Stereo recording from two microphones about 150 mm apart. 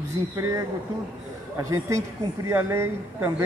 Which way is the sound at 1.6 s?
20° right (ahead or behind).